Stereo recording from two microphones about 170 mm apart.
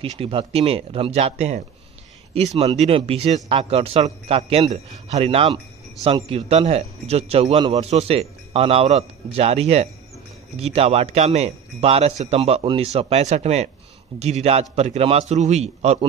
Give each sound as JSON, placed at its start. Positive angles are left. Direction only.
{"t": 0.0, "sound": "a man's voice", "side_deg": -30}